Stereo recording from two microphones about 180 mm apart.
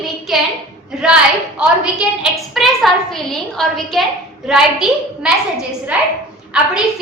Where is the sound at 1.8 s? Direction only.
Centre (ahead or behind).